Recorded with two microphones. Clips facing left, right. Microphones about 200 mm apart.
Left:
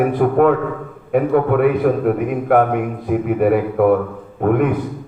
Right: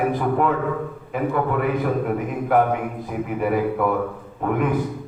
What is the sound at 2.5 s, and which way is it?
A man's voice, 60° left (ahead or behind).